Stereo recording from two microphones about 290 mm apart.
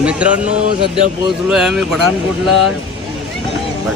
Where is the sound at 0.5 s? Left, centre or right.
Right.